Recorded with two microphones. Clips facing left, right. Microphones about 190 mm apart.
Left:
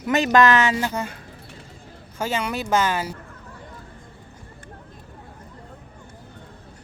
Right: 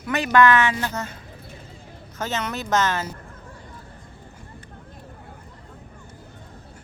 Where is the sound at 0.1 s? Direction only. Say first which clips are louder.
Left 1 dB; 25° left (ahead or behind).